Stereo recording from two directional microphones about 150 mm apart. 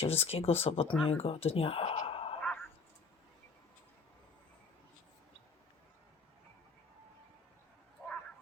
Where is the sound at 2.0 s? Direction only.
40° left (ahead or behind).